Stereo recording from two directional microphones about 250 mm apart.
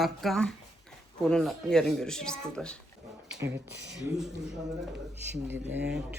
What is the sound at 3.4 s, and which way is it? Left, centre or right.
Speech, right.